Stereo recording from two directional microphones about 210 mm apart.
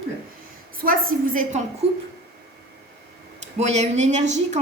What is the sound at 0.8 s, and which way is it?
Speech, 40° right (ahead or behind).